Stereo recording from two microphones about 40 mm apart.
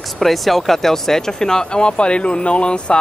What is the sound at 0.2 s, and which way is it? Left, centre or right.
A woman's voice, centre.